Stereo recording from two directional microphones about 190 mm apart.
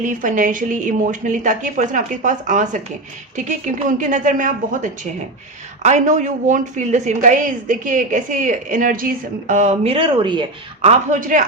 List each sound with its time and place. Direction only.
0.0 s a woman's voice: 45° right (ahead or behind)